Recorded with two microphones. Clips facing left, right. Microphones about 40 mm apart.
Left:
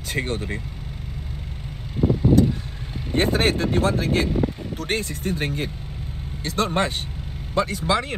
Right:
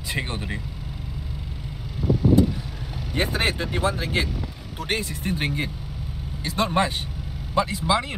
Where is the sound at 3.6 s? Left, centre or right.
Right.